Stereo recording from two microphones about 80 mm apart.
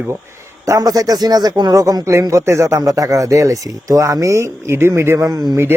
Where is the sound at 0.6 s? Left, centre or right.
Right.